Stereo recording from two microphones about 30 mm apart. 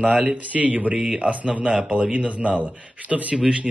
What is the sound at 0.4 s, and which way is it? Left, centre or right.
Speech, right.